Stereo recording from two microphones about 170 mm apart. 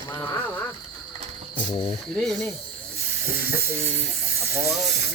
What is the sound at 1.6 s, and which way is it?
Speech, 30° left (ahead or behind).